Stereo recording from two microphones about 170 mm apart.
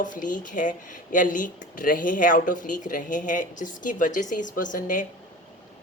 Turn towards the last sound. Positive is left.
turn(degrees=50)  # may be behind; listen again after turning